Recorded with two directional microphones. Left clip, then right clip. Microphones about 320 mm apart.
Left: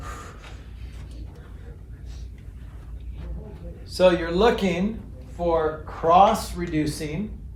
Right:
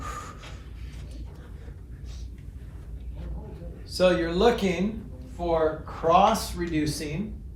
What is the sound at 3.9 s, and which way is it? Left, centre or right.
Speech, left.